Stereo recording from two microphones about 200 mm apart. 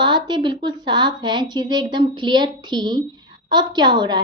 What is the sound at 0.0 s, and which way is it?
A woman's voice, 20° right (ahead or behind).